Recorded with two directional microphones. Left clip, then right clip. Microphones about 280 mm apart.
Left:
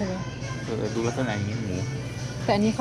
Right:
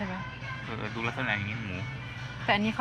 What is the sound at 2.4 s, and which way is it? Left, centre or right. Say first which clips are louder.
Speech: left 3 dB; centre.